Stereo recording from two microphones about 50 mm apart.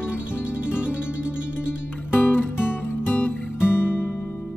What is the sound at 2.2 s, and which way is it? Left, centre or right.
Music, left.